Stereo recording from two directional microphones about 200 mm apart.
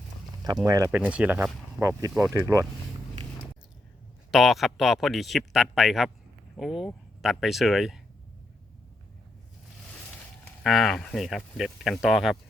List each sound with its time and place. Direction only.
0.6 s speech: 15° right (ahead or behind)
0.9 s speech: 5° right (ahead or behind)
4.3 s speech: centre (ahead or behind)
10.4 s speech: centre (ahead or behind)